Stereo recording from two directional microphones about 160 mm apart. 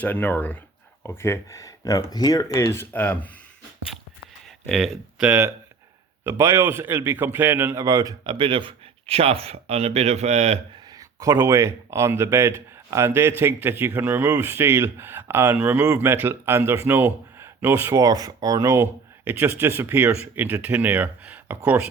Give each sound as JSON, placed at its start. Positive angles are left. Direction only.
{"t": 0.0, "sound": "speech", "side_deg": 10}
{"t": 4.7, "sound": "speech", "side_deg": 0}
{"t": 5.2, "sound": "speech", "side_deg": -10}
{"t": 10.9, "sound": "speech", "side_deg": -20}